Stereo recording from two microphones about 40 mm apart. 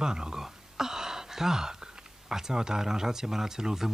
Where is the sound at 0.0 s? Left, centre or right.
Centre.